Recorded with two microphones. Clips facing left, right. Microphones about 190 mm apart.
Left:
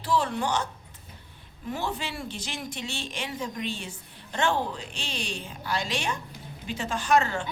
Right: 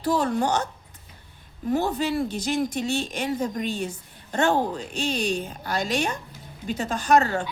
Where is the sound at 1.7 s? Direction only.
40° right (ahead or behind).